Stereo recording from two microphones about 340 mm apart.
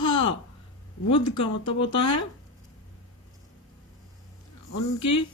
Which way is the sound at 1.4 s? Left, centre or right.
Left.